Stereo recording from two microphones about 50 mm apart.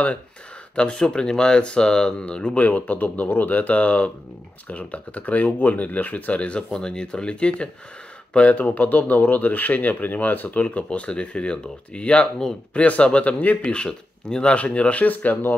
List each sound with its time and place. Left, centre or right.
0.7 s speech: centre
2.5 s speech: left
13.6 s speech: centre; by 15.5 s left